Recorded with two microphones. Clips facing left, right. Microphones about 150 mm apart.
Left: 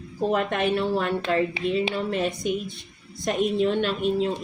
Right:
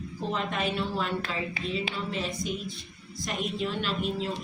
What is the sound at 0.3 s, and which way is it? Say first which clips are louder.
Speech: left 7 dB; 60° left (ahead or behind).